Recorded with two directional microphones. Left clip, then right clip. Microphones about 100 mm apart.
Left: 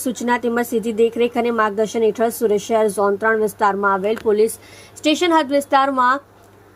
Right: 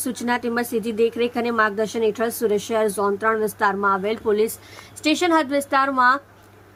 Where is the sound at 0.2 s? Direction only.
15° left (ahead or behind).